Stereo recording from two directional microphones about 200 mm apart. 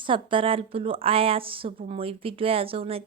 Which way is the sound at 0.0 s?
25° right (ahead or behind).